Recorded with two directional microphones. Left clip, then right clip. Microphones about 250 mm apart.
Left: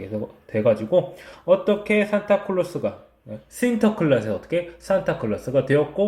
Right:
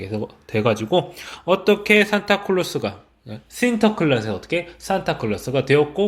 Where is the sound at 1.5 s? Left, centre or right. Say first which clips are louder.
Right 3 dB; right.